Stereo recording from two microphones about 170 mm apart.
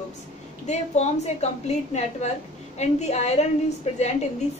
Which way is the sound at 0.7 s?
40° left (ahead or behind).